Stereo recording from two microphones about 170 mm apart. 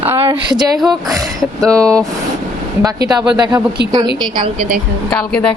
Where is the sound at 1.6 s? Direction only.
20° right (ahead or behind).